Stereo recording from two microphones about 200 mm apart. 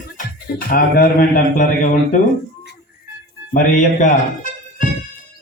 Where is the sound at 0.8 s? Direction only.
45° left (ahead or behind).